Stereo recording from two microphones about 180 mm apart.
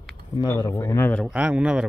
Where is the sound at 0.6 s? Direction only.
15° left (ahead or behind).